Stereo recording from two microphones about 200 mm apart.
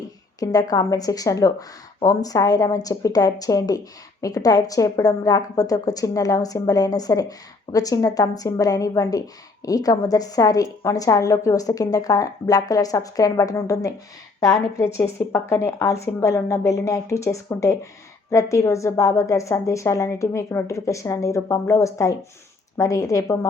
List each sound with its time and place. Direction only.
0.3 s a woman's voice: 20° left (ahead or behind)